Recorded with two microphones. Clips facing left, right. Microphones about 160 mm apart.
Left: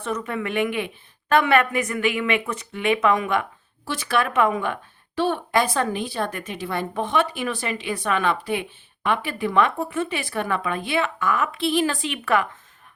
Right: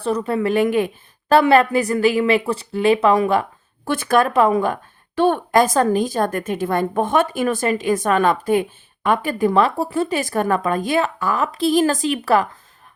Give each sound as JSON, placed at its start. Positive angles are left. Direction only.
{"t": 0.0, "sound": "speech", "side_deg": -35}
{"t": 3.8, "sound": "speech", "side_deg": -50}
{"t": 5.1, "sound": "a woman's voice", "side_deg": -50}